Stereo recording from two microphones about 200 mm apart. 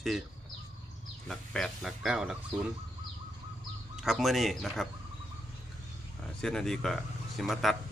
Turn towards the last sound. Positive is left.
turn(degrees=0)  # may be behind; listen again after turning